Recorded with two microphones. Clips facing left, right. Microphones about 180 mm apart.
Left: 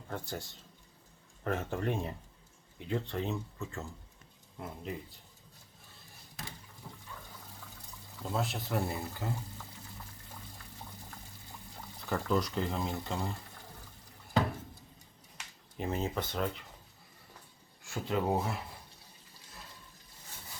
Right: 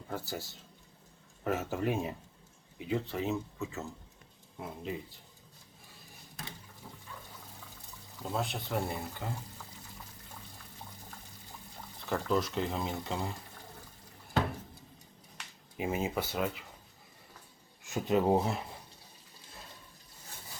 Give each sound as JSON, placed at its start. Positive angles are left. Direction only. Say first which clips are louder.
{"t": 0.1, "sound": "speech", "louder": "right 1 dB", "side_deg": -5}
{"t": 8.2, "sound": "speech", "louder": "even", "side_deg": 0}
{"t": 12.0, "sound": "speech", "louder": "right 1 dB", "side_deg": 0}
{"t": 15.8, "sound": "speech", "louder": "right 2 dB", "side_deg": -10}
{"t": 17.8, "sound": "speech", "louder": "right 4 dB", "side_deg": -20}